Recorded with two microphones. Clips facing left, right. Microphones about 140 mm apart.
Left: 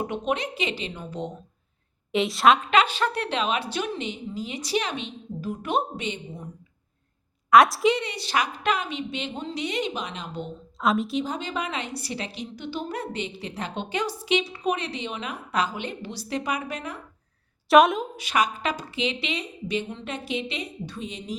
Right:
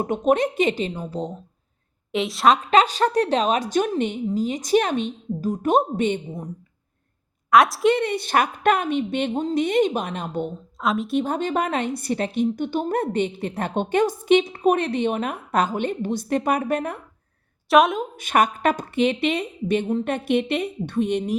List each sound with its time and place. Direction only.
0.0 s a woman's voice: 45° right (ahead or behind)
2.1 s a woman's voice: centre (ahead or behind)
2.6 s a woman's voice: 40° right (ahead or behind)
7.5 s a woman's voice: centre (ahead or behind)
7.9 s a woman's voice: 55° right (ahead or behind)
10.8 s a woman's voice: centre (ahead or behind)
11.1 s a woman's voice: 50° right (ahead or behind)
17.7 s a woman's voice: centre (ahead or behind)
18.2 s a woman's voice: 50° right (ahead or behind)